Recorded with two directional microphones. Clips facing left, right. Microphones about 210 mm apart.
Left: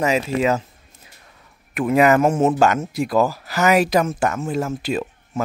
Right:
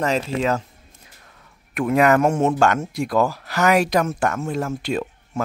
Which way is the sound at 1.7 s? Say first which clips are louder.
Left 1 dB; 5° left (ahead or behind).